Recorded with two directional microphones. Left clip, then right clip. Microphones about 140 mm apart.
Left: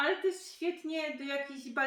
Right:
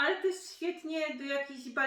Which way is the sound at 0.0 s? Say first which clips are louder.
Right 1 dB; 20° left (ahead or behind).